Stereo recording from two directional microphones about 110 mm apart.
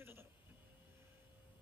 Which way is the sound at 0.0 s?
20° right (ahead or behind).